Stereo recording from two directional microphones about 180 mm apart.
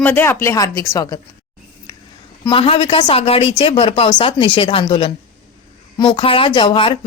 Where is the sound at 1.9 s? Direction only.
20° left (ahead or behind).